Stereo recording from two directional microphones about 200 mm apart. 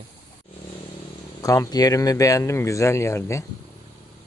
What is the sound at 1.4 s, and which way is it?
Speech, 15° left (ahead or behind).